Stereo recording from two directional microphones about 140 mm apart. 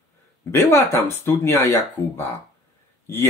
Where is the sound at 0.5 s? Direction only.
20° left (ahead or behind).